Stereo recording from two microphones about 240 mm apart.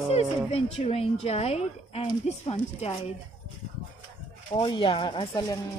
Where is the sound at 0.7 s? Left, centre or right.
Left.